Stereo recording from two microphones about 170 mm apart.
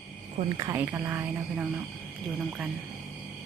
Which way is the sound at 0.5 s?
20° right (ahead or behind).